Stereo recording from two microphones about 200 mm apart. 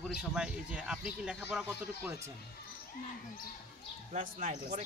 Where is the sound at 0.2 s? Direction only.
5° right (ahead or behind).